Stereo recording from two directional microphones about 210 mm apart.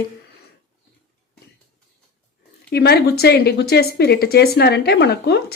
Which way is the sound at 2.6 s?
50° left (ahead or behind).